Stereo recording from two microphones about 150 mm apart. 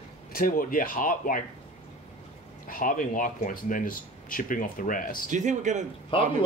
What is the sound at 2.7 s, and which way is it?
Speech, 65° left (ahead or behind).